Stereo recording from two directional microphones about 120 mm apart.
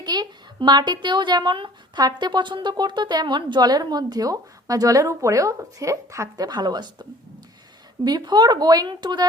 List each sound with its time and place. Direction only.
0.0 s speech: 35° right (ahead or behind)
8.0 s speech: 35° right (ahead or behind)